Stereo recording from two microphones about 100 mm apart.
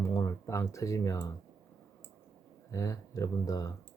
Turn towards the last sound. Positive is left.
turn(degrees=35)  # may be behind; listen again after turning